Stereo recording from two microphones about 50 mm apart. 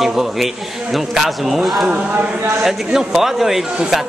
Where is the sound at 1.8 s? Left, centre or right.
Right.